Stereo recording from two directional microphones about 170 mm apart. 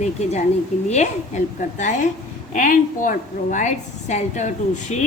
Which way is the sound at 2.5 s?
50° left (ahead or behind).